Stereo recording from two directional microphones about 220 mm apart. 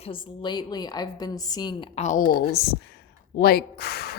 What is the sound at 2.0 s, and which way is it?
A woman's voice, 35° left (ahead or behind).